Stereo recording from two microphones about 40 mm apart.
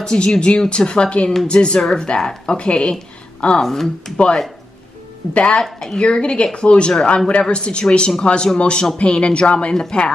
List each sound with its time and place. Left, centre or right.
0.0 s speech: centre
1.8 s speech: centre
2.5 s speech: left
3.6 s speech: centre
5.3 s speech: left
5.6 s speech: centre
5.9 s speech: left
9.8 s speech: left